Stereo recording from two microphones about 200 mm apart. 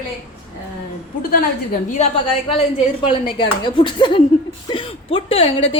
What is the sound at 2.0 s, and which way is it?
Speech, 35° left (ahead or behind).